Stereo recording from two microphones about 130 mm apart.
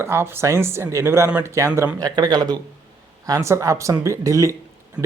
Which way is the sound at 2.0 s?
35° right (ahead or behind).